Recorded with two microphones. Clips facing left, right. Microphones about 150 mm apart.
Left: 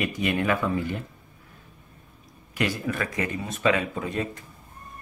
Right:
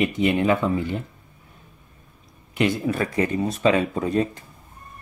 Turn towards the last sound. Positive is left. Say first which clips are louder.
# right 7 dB
turn(degrees=-35)  # may be behind; listen again after turning